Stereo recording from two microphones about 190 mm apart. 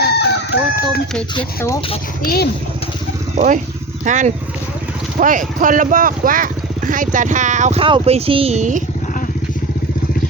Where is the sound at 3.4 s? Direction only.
40° right (ahead or behind).